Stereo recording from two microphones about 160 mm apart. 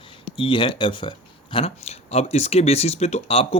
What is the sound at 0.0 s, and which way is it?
Speech, 35° left (ahead or behind).